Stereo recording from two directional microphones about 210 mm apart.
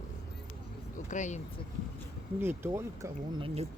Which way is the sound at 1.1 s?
35° left (ahead or behind).